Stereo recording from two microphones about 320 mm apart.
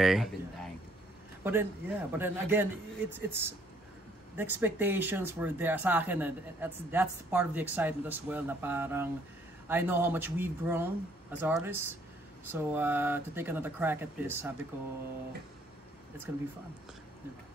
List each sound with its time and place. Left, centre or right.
0.0 s speech: centre